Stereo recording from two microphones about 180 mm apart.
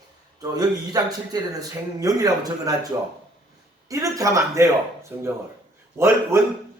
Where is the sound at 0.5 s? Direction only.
20° right (ahead or behind).